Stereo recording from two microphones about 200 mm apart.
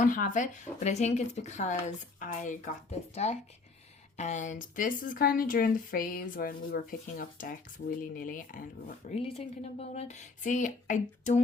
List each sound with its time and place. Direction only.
0.0 s speech: 40° left (ahead or behind)
9.1 s speech: 30° left (ahead or behind)